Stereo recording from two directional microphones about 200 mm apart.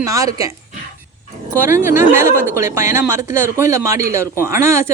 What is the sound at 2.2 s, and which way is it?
Speech, 10° right (ahead or behind).